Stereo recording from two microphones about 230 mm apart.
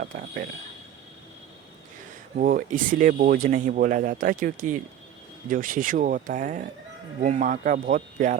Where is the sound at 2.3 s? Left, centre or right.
Right.